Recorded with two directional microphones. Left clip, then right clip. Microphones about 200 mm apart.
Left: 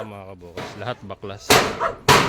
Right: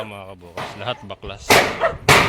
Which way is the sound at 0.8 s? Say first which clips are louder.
Right 1 dB; 25° left (ahead or behind).